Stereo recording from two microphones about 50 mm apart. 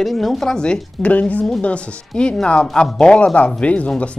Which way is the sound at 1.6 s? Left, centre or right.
Left.